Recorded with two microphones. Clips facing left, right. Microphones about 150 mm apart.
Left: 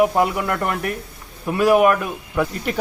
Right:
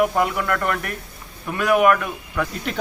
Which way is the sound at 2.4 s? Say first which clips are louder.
Left 4 dB; 10° left (ahead or behind).